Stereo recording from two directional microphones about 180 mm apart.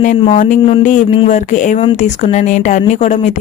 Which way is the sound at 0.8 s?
45° left (ahead or behind).